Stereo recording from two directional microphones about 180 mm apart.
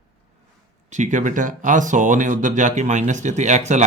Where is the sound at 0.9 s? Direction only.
40° right (ahead or behind).